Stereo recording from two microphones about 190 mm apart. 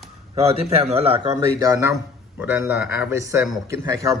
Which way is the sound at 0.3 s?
30° right (ahead or behind).